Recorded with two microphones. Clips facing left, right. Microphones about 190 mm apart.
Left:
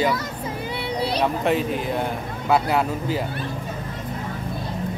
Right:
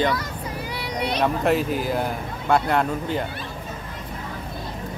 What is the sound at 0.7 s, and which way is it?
Vehicle, 25° left (ahead or behind).